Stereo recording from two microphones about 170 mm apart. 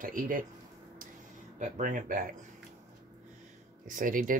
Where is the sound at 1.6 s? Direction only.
50° right (ahead or behind).